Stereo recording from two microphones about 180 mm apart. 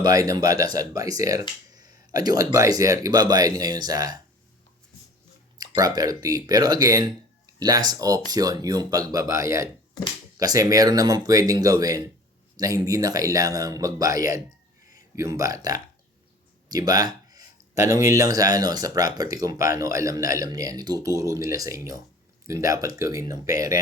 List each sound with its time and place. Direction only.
0.0 s speech: 20° right (ahead or behind)
5.5 s speech: 20° right (ahead or behind)